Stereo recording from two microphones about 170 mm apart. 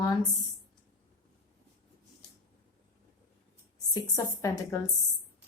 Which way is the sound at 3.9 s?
20° left (ahead or behind).